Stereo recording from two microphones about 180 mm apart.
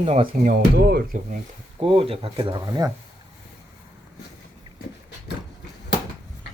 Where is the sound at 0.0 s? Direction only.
35° right (ahead or behind).